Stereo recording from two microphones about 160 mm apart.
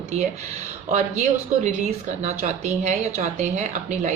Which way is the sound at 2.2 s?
45° right (ahead or behind).